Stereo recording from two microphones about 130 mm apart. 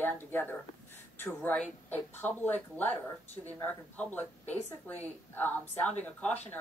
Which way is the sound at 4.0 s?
15° left (ahead or behind).